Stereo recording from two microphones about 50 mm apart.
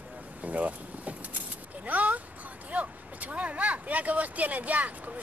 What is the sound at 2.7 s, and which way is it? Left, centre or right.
Speech, right.